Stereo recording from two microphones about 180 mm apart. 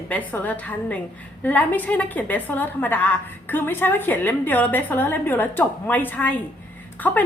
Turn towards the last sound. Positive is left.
turn(degrees=10)  # may be behind; listen again after turning